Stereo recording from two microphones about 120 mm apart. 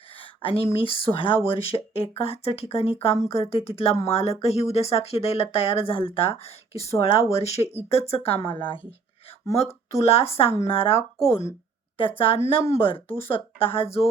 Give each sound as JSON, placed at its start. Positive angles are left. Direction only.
{"t": 0.2, "sound": "speech", "side_deg": 50}
{"t": 10.0, "sound": "speech", "side_deg": 55}
{"t": 11.3, "sound": "a woman's voice", "side_deg": 20}
{"t": 13.1, "sound": "speech", "side_deg": 50}